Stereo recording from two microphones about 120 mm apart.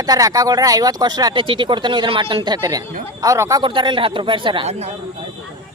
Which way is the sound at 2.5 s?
30° right (ahead or behind).